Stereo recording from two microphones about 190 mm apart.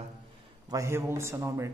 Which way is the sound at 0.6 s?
15° right (ahead or behind).